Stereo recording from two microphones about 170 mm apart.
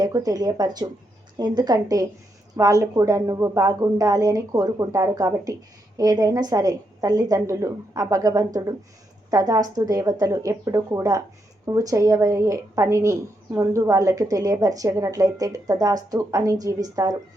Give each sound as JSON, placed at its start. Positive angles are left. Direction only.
{"t": 0.0, "sound": "a woman's voice", "side_deg": -20}